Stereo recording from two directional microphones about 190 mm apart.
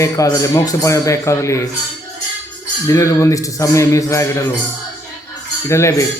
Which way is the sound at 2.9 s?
15° left (ahead or behind).